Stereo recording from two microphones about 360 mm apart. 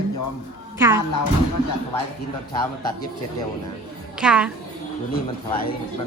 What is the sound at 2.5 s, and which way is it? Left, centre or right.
Speech, centre.